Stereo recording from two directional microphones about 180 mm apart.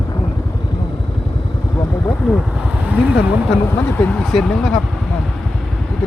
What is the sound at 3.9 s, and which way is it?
Speech, 5° left (ahead or behind).